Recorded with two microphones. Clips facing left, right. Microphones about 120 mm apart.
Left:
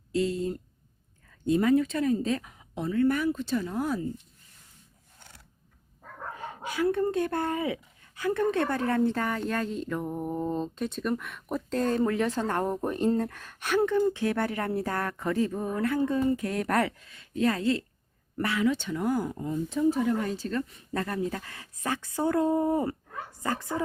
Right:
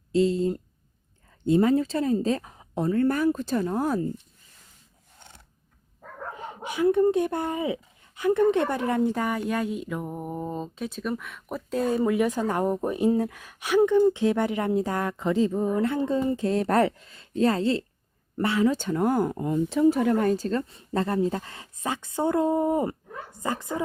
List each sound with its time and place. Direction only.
0.1 s speech: 25° right (ahead or behind); by 4.0 s 45° right (ahead or behind)
6.3 s speech: 20° right (ahead or behind)